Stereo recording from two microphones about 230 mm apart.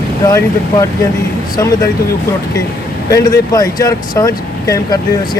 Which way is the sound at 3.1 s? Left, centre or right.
Centre.